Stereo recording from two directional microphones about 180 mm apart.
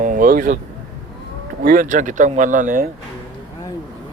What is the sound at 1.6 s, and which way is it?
Speech, 50° right (ahead or behind).